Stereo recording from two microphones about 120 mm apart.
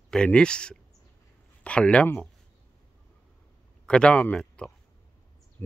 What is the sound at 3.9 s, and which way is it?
Speech, 10° left (ahead or behind).